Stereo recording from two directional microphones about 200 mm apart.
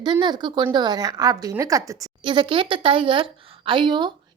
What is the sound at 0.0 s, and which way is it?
A woman's voice, 20° right (ahead or behind).